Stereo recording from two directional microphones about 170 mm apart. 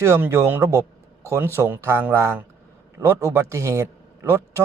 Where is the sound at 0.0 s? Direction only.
15° right (ahead or behind).